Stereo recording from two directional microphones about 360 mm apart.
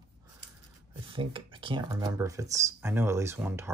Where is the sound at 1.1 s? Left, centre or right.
Centre.